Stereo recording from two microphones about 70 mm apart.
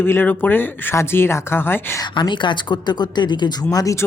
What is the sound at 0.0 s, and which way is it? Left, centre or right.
Speech, left.